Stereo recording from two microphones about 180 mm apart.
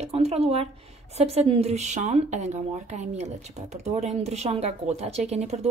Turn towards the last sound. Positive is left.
turn(degrees=-35)  # may be behind; listen again after turning